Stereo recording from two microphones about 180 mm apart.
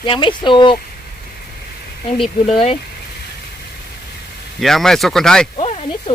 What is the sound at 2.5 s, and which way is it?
Speech, 35° left (ahead or behind).